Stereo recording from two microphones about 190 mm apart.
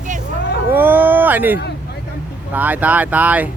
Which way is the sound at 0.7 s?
10° right (ahead or behind).